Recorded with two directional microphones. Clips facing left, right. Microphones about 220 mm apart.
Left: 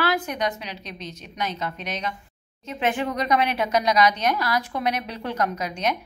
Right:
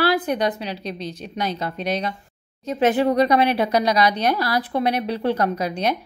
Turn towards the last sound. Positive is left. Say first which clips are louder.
# right 4 dB
turn(degrees=-35)  # may be behind; listen again after turning